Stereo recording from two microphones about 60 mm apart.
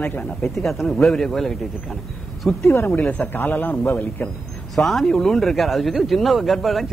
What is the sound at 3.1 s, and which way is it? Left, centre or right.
A man's voice, left.